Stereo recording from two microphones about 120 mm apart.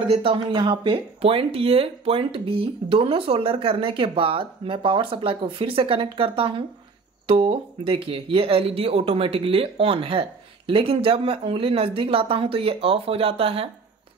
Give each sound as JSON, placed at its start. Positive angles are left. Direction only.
{"t": 0.1, "sound": "speech", "side_deg": -45}